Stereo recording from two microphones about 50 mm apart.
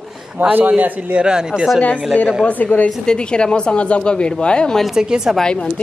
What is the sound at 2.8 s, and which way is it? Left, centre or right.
A woman's voice, centre.